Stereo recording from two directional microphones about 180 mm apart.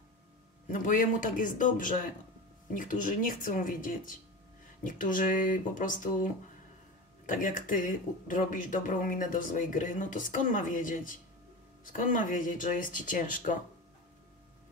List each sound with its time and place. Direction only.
0.7 s speech: 45° left (ahead or behind)